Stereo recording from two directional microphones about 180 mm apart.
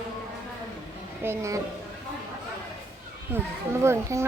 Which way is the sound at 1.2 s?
15° right (ahead or behind).